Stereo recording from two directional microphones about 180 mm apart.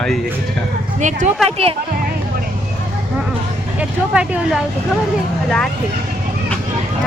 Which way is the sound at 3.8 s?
5° right (ahead or behind).